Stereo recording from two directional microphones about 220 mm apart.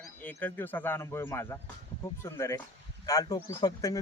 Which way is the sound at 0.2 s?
10° left (ahead or behind).